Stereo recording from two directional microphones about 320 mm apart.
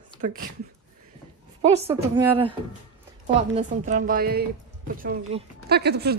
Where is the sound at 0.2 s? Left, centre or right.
Right.